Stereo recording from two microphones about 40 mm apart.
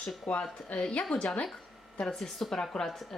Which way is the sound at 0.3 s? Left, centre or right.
Left.